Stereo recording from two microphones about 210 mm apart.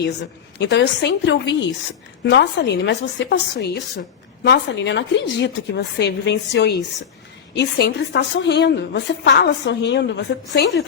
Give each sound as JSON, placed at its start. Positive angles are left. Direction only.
{"t": 0.6, "sound": "a woman's voice", "side_deg": 55}